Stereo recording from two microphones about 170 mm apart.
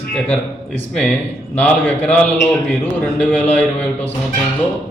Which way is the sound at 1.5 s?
10° left (ahead or behind).